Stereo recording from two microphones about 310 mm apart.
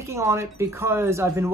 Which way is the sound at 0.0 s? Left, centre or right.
Centre.